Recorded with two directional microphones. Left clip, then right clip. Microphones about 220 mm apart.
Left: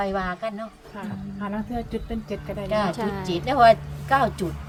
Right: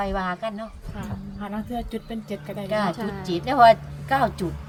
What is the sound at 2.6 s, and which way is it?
Speech, 5° left (ahead or behind).